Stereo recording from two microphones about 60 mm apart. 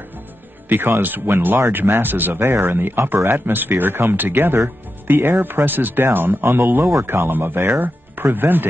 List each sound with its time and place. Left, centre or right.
0.7 s speech: right